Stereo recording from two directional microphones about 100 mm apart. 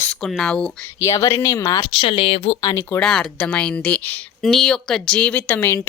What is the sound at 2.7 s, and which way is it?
Speech, 25° left (ahead or behind).